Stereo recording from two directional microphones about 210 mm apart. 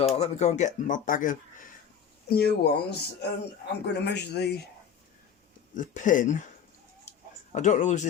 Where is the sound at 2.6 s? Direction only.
50° left (ahead or behind).